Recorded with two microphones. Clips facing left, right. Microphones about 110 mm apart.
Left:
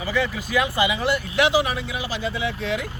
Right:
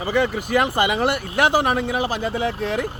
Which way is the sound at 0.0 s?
55° right (ahead or behind).